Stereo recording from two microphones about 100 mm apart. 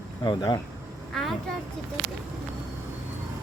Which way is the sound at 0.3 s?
40° left (ahead or behind).